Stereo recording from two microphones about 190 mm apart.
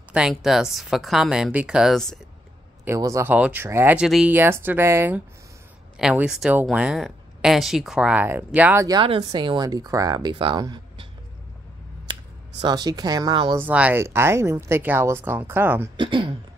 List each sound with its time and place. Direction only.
0.1 s speech: 5° right (ahead or behind)
2.8 s speech: 15° right (ahead or behind)
8.8 s speech: 25° right (ahead or behind)
12.6 s speech: 20° right (ahead or behind)
13.6 s speech: 10° right (ahead or behind)
16.0 s speech: 25° right (ahead or behind)